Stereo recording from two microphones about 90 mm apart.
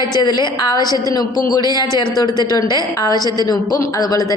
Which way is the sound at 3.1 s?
40° right (ahead or behind).